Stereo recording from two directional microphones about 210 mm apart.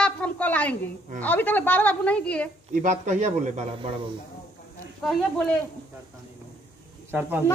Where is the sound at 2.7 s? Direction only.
35° right (ahead or behind).